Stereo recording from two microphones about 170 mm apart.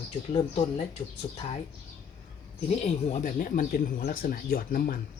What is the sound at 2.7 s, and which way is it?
Speech, 40° left (ahead or behind).